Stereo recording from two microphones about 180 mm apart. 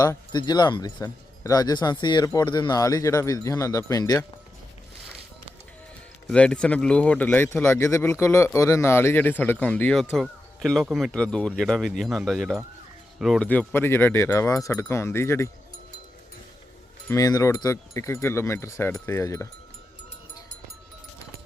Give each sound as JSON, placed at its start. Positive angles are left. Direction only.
{"t": 0.0, "sound": "speech", "side_deg": 20}
{"t": 6.2, "sound": "speech", "side_deg": 5}
{"t": 17.1, "sound": "speech", "side_deg": 20}